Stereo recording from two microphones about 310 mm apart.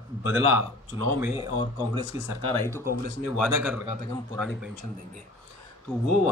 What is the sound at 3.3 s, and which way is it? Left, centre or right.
Speech, centre.